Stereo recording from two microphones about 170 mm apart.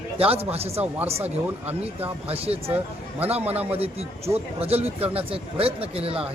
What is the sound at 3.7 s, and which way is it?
Speech, 35° right (ahead or behind).